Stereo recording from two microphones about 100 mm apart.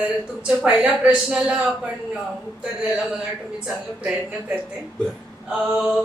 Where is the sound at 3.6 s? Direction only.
10° right (ahead or behind).